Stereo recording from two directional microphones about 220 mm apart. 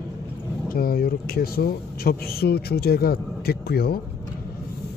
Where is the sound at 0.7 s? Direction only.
45° left (ahead or behind).